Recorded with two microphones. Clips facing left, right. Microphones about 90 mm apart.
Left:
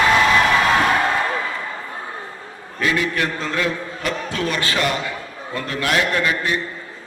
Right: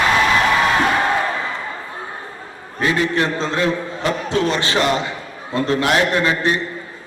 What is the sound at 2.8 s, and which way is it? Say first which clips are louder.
A man's voice: right 3 dB; 30° right (ahead or behind).